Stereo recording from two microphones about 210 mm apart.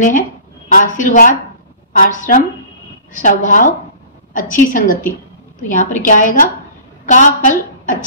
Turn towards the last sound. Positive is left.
turn(degrees=35)  # may be behind; listen again after turning